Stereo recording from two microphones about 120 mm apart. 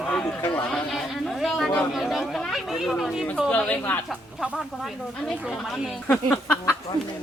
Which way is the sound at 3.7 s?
15° left (ahead or behind).